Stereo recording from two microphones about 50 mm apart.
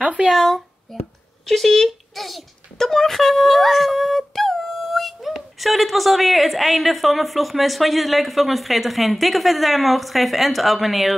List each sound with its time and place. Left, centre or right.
0.0 s speech: right
0.3 s a woman's voice: centre
1.4 s a sound: centre
5.3 s a woman's voice: centre